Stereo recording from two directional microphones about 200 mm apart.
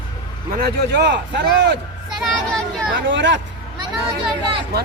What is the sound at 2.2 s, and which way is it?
Speech, centre (ahead or behind).